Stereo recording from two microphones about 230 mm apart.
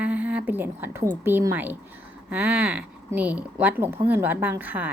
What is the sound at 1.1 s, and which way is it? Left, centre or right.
A woman's voice, centre.